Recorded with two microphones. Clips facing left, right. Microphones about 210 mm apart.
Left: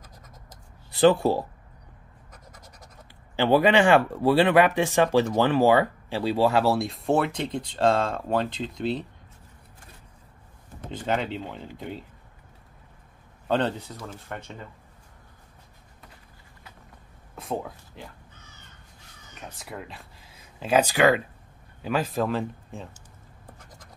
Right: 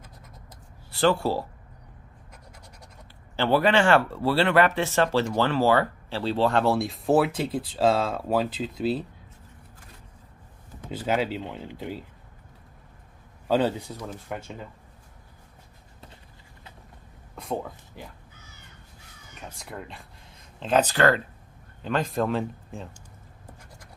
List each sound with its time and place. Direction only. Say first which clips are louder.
0.9 s speech: left 4 dB; 20° left (ahead or behind)
3.3 s speech: left 2 dB; 15° left (ahead or behind); by 9.0 s 5° right (ahead or behind)
10.9 s speech: right 2 dB; 5° right (ahead or behind)
13.5 s speech: right 2 dB; 5° right (ahead or behind)
17.4 s a sound: even; centre (ahead or behind)
19.5 s speech: left 1 dB; centre (ahead or behind)